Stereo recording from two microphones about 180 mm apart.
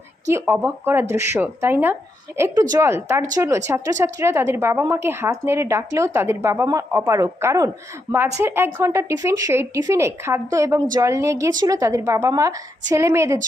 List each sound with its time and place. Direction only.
0.3 s speech: 15° right (ahead or behind)